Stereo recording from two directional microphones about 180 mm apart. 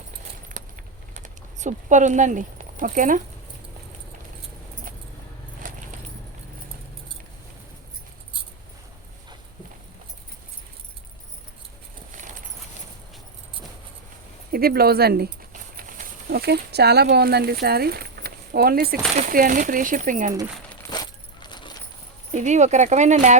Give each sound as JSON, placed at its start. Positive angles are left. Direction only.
{"t": 0.4, "sound": "typing", "side_deg": -45}
{"t": 12.1, "sound": "keys jangling", "side_deg": -45}
{"t": 14.5, "sound": "speech", "side_deg": -55}
{"t": 19.1, "sound": "speech", "side_deg": -45}
{"t": 20.9, "sound": "keys jangling", "side_deg": 25}
{"t": 22.4, "sound": "speech", "side_deg": -40}